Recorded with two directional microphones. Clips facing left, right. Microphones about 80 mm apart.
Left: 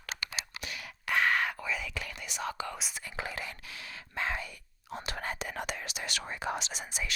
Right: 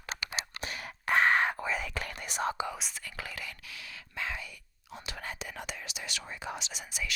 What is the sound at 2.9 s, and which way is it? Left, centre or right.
Whispering, left.